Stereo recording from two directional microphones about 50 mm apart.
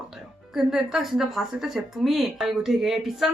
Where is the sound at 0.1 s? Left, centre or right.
Centre.